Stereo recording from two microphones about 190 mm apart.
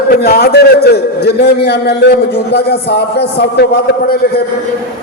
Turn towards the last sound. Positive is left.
turn(degrees=60)  # may be behind; listen again after turning